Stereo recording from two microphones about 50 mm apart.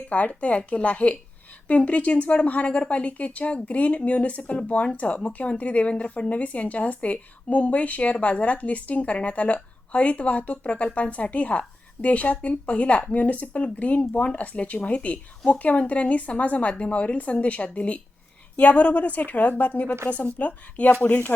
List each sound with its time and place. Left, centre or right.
0.1 s a woman's voice: left